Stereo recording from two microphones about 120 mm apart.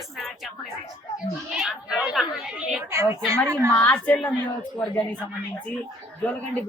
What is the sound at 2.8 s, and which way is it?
Speech, 25° right (ahead or behind).